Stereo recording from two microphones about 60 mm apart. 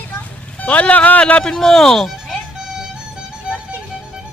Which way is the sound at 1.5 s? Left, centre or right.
Centre.